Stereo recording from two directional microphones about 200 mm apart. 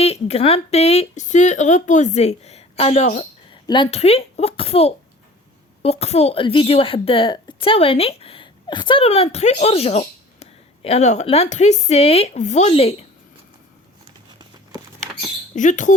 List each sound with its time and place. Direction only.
0.0 s a child's voice: 30° left (ahead or behind)
15.5 s speech: 40° left (ahead or behind)